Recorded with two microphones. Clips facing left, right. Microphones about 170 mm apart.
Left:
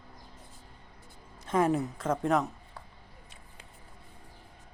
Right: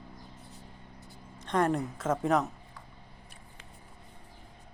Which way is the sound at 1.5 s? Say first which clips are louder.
Left 1 dB; 5° left (ahead or behind).